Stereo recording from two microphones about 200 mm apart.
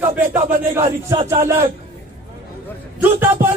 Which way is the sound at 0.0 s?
10° right (ahead or behind).